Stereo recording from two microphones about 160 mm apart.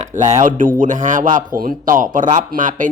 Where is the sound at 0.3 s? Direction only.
45° right (ahead or behind).